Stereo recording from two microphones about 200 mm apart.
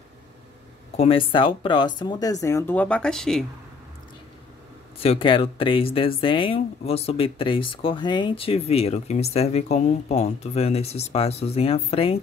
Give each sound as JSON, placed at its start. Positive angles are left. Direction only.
{"t": 0.9, "sound": "speech", "side_deg": 25}
{"t": 5.0, "sound": "speech", "side_deg": 25}